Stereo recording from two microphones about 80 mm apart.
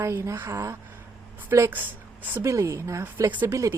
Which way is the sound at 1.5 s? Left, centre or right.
Right.